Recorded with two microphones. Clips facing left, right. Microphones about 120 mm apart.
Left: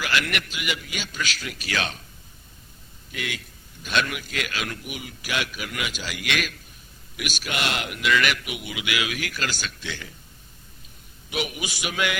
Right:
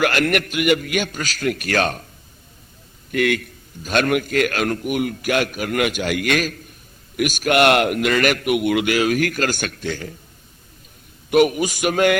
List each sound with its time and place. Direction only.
0.0 s a man's voice: 50° right (ahead or behind)
3.1 s a man's voice: 55° right (ahead or behind)
11.3 s a man's voice: 50° right (ahead or behind)